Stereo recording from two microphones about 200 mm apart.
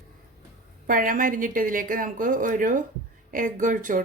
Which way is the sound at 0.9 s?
45° right (ahead or behind).